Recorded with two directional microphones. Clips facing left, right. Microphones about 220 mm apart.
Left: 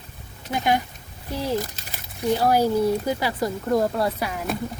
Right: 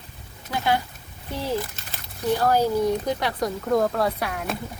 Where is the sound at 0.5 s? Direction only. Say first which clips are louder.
Left 1 dB; 15° left (ahead or behind).